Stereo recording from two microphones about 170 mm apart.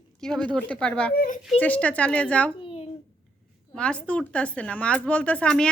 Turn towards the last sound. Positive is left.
turn(degrees=5)  # may be behind; listen again after turning